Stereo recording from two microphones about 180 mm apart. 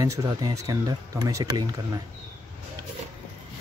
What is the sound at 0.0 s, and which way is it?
Speech, 20° right (ahead or behind).